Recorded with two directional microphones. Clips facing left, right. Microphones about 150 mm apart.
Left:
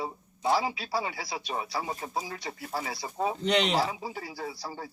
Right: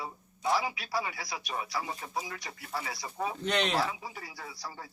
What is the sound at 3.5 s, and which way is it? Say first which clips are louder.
Speech: left 4 dB; 15° left (ahead or behind).